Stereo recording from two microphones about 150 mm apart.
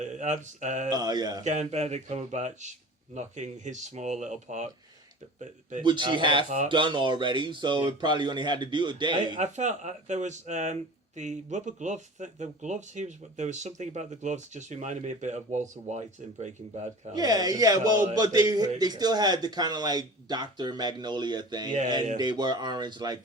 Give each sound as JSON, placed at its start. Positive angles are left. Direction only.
{"t": 0.0, "sound": "a sound", "side_deg": -55}
{"t": 0.9, "sound": "a man's voice", "side_deg": -25}
{"t": 1.5, "sound": "speech", "side_deg": -50}
{"t": 5.8, "sound": "speech", "side_deg": -30}
{"t": 9.4, "sound": "speech", "side_deg": -50}
{"t": 17.2, "sound": "a man's voice", "side_deg": -25}